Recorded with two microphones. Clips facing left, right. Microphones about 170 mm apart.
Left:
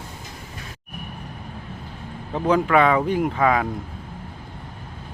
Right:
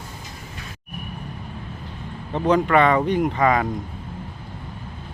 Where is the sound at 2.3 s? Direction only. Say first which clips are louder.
Right 1 dB; 5° left (ahead or behind).